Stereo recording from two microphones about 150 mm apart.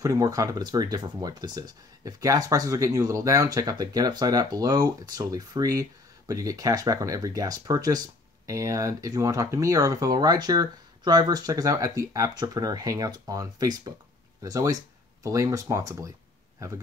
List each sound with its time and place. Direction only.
0.0 s speech: 25° right (ahead or behind)